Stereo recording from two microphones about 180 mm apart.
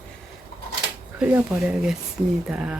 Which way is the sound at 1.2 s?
10° right (ahead or behind).